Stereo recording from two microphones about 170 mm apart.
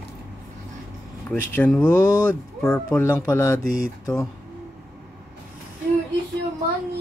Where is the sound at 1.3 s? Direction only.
5° left (ahead or behind).